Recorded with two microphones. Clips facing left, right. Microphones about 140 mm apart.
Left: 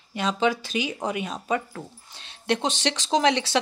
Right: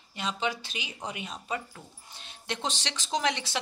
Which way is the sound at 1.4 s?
90° left.